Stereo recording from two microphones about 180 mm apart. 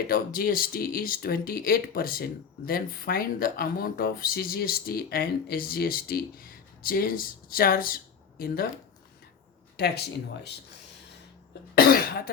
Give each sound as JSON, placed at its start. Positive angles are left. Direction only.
{"t": 0.1, "sound": "speech", "side_deg": 55}
{"t": 9.7, "sound": "speech", "side_deg": 65}
{"t": 11.7, "sound": "cough", "side_deg": 55}